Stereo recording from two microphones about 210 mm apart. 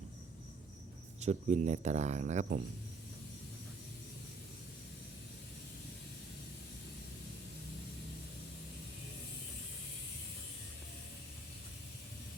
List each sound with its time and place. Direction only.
1.2 s speech: 35° right (ahead or behind)